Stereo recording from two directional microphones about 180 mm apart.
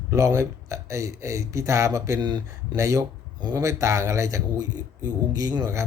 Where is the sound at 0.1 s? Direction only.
15° right (ahead or behind).